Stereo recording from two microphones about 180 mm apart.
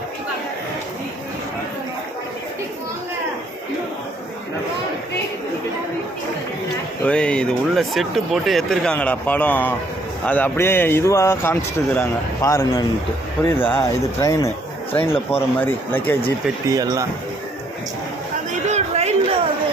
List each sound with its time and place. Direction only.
7.0 s speech: 5° left (ahead or behind)
16.6 s speech: 20° right (ahead or behind)
18.7 s a sound: 35° right (ahead or behind)